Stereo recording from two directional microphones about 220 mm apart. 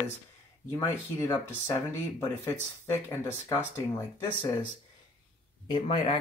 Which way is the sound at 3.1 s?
10° left (ahead or behind).